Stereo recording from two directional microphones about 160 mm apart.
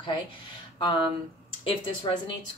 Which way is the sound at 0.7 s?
30° left (ahead or behind).